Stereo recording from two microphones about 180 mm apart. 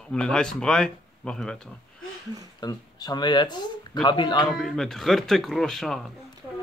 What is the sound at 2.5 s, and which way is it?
Speech, 20° left (ahead or behind).